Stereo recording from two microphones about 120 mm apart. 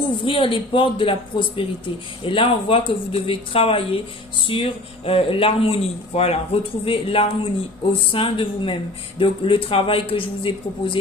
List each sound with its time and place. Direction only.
0.2 s speech: 45° left (ahead or behind)